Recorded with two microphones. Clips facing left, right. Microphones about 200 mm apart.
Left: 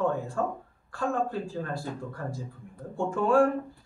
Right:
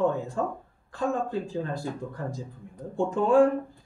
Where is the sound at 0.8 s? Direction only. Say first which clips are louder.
Right 1 dB; 20° right (ahead or behind).